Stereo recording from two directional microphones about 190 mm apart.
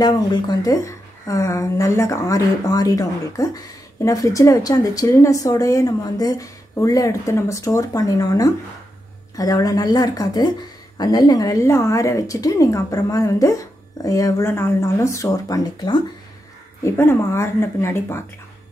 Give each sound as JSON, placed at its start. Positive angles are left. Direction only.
{"t": 0.0, "sound": "a woman's voice", "side_deg": 20}